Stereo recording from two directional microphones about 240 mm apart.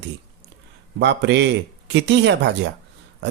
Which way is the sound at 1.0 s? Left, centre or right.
Right.